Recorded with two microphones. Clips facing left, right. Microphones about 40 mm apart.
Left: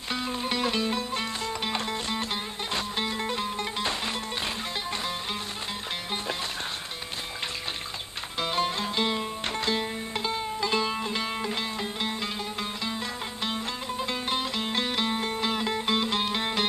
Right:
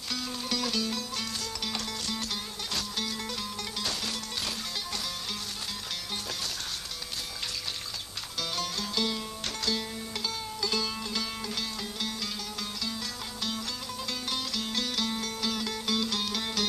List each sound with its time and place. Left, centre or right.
0.1 s music: left
8.4 s music: left
13.4 s music: left